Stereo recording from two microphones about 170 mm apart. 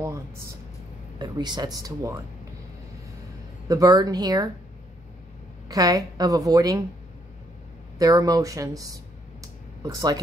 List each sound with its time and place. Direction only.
1.2 s a woman's voice: 25° right (ahead or behind)
3.6 s a woman's voice: 20° right (ahead or behind)
5.7 s a woman's voice: 20° right (ahead or behind)
8.0 s speech: 20° right (ahead or behind)